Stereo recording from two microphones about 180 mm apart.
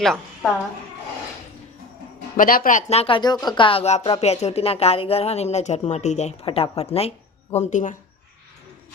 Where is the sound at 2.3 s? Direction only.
50° left (ahead or behind).